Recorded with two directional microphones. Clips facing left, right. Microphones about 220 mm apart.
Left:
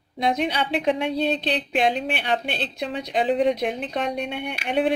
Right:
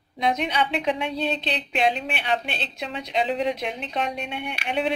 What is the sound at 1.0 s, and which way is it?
A woman's voice, 50° left (ahead or behind).